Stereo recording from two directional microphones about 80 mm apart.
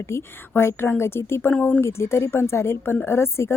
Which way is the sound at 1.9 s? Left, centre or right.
Left.